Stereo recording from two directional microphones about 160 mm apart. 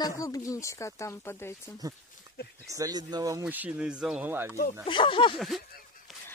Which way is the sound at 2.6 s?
20° right (ahead or behind).